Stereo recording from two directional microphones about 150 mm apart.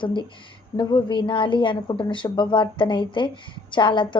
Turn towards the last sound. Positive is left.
turn(degrees=35)  # may be behind; listen again after turning